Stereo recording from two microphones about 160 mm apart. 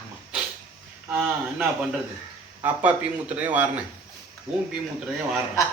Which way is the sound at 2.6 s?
10° right (ahead or behind).